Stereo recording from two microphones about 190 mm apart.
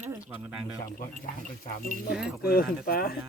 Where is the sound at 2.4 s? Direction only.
50° left (ahead or behind).